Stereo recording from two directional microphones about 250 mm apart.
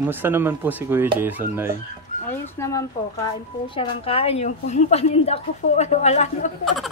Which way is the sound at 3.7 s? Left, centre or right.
Left.